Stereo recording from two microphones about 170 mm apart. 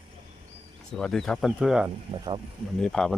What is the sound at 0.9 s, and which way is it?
Speech, 5° left (ahead or behind).